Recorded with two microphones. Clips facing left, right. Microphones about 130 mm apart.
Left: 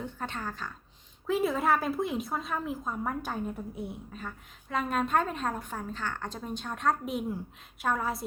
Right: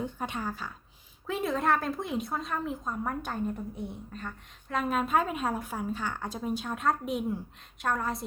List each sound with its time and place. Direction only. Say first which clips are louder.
0.0 s speech: right 3 dB; 10° right (ahead or behind)
1.3 s a woman's voice: left 1 dB; centre (ahead or behind)